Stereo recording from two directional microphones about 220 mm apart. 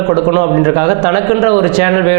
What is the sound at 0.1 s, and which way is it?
A man's voice, 25° right (ahead or behind).